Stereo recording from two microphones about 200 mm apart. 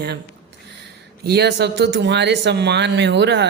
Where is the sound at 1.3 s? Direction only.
55° right (ahead or behind).